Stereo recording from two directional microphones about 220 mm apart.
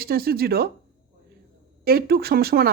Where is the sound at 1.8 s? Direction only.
45° right (ahead or behind).